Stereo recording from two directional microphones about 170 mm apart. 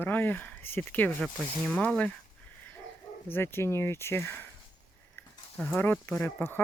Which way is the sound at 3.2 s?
15° left (ahead or behind).